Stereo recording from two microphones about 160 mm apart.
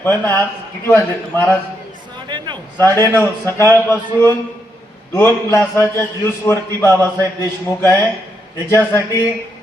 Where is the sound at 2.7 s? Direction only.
15° left (ahead or behind).